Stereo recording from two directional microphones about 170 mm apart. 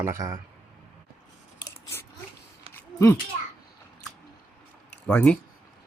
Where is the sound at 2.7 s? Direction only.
10° left (ahead or behind).